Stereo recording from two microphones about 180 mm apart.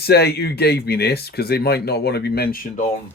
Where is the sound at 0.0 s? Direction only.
60° left (ahead or behind).